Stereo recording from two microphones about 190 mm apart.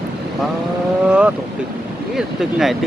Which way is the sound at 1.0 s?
5° right (ahead or behind).